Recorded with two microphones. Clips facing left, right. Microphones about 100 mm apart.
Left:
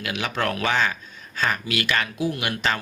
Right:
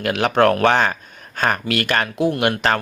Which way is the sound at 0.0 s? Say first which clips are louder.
Right 10 dB; 55° right (ahead or behind).